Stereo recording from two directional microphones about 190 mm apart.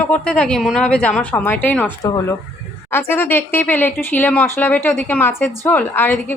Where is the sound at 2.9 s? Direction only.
10° left (ahead or behind).